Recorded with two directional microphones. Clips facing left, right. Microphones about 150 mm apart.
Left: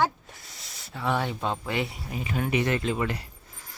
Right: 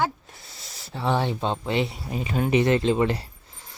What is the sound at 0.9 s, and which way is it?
Speech, 30° right (ahead or behind).